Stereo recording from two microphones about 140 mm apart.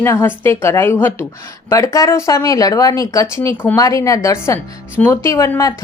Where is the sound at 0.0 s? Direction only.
20° left (ahead or behind).